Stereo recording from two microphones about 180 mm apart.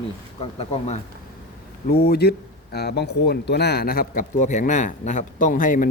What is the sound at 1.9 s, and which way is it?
Speech, 60° left (ahead or behind).